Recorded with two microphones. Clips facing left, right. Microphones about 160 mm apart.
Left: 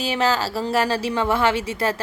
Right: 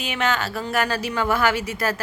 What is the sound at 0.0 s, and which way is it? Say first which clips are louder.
Speech: left 3 dB; 35° left (ahead or behind).